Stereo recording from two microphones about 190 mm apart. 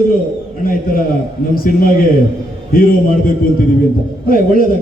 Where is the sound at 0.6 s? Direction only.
50° left (ahead or behind).